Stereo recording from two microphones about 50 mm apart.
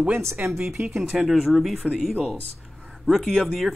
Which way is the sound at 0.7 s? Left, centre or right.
Right.